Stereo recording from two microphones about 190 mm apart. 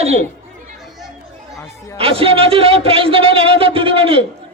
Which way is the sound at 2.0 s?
30° right (ahead or behind).